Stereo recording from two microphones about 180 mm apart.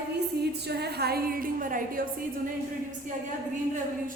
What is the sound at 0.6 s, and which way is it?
A woman's voice, 65° right (ahead or behind).